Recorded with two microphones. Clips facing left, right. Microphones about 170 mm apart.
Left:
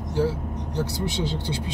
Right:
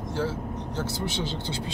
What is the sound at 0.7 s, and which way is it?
Speech, 15° left (ahead or behind).